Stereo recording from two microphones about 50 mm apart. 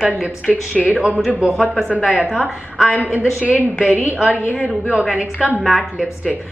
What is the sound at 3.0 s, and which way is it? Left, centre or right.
A woman's voice, right.